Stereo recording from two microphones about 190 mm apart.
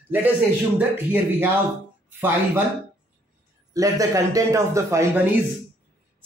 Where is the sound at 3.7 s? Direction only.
15° right (ahead or behind).